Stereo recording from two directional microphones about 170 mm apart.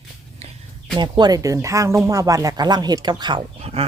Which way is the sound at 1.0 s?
25° right (ahead or behind).